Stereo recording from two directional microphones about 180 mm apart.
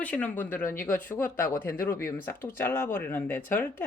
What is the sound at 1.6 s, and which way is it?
Speech, 10° left (ahead or behind).